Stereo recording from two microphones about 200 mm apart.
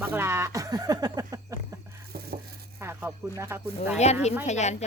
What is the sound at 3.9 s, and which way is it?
Speech, 35° left (ahead or behind).